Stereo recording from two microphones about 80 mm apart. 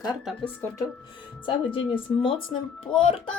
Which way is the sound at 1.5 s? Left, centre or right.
Left.